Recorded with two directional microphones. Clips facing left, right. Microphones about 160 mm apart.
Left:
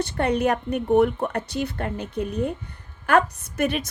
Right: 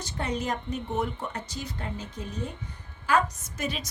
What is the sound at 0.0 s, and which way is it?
A woman's voice, 65° left (ahead or behind).